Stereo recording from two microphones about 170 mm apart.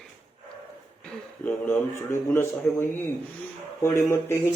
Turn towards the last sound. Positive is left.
turn(degrees=15)  # may be behind; listen again after turning